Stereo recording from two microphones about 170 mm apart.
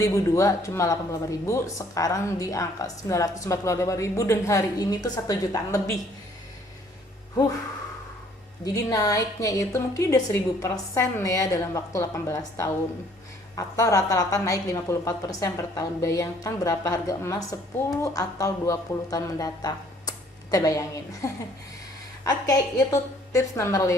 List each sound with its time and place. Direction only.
0.0 s speech: 20° left (ahead or behind)
8.6 s a woman's voice: 20° left (ahead or behind)